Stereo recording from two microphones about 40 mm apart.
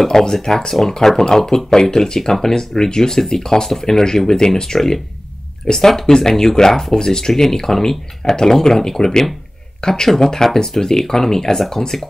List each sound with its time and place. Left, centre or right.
0.0 s speech: centre
4.7 s speech: centre